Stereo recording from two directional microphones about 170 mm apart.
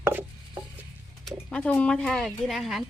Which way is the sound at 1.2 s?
5° left (ahead or behind).